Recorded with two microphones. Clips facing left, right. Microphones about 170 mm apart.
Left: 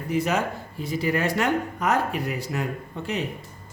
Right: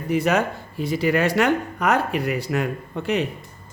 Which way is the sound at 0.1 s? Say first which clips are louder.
Right 4 dB; 65° right (ahead or behind).